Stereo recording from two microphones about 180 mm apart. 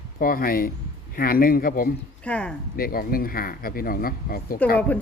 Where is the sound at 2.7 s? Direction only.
55° left (ahead or behind).